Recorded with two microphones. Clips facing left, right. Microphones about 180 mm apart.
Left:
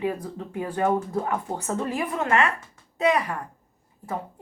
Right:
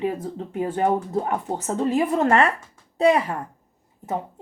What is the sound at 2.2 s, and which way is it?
A woman's voice, 35° right (ahead or behind).